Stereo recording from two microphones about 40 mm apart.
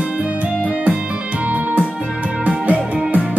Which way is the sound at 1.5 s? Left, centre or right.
Right.